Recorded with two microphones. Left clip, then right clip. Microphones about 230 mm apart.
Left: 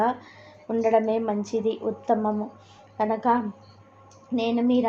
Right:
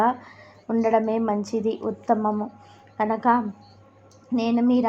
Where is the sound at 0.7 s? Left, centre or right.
Centre.